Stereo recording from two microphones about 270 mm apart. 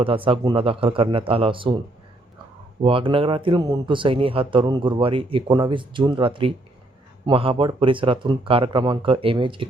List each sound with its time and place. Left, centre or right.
0.0 s speech: centre
2.8 s speech: centre